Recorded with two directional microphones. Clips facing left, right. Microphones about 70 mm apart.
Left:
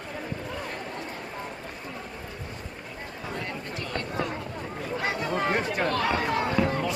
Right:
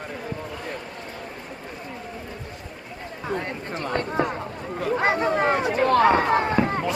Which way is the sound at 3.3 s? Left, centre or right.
Right.